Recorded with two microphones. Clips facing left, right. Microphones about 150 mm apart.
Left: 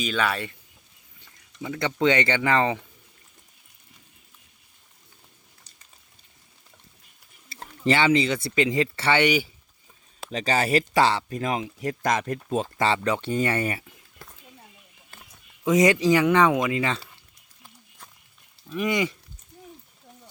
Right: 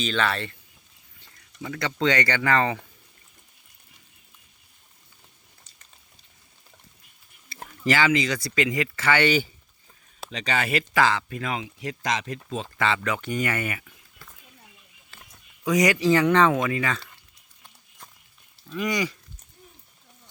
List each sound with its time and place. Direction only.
0.0 s speech: 10° left (ahead or behind)
1.6 s speech: 20° left (ahead or behind)
7.9 s speech: 25° left (ahead or behind)
9.2 s speech: 10° left (ahead or behind)
10.3 s speech: 40° left (ahead or behind)
13.0 s speech: 25° left (ahead or behind)
15.1 s a sound: 50° left (ahead or behind)
15.6 s speech: 25° left (ahead or behind)
18.7 s speech: 20° left (ahead or behind)